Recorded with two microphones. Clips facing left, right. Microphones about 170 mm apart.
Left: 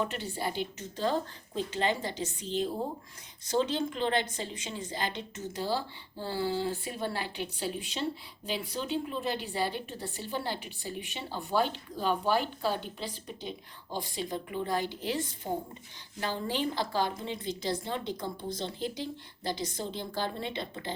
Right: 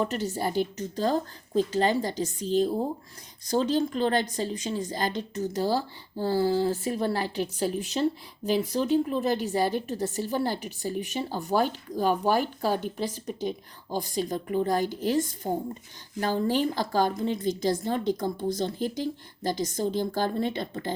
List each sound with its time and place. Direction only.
0.0 s a woman's voice: 40° right (ahead or behind)